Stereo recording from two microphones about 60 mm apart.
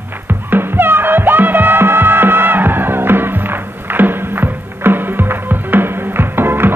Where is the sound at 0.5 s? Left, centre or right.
Right.